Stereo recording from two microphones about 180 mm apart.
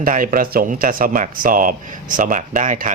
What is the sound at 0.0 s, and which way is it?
Speech, 50° right (ahead or behind).